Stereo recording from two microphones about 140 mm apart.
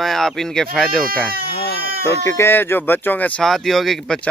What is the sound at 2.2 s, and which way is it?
Speech, 20° left (ahead or behind).